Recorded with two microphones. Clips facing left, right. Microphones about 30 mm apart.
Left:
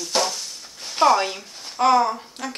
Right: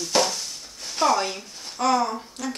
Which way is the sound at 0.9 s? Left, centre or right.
Left.